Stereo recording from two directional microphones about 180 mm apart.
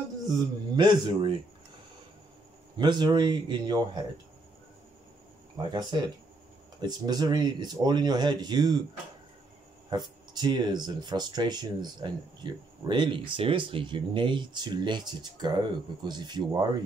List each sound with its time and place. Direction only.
0.3 s speech: 25° right (ahead or behind)
2.8 s speech: 25° right (ahead or behind)
5.6 s speech: 25° right (ahead or behind)
9.8 s speech: 25° right (ahead or behind)